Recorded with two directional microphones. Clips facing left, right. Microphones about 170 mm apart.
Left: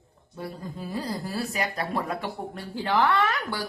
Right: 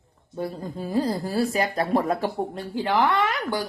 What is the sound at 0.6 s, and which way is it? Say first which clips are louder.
Speech: right 9 dB; 30° right (ahead or behind).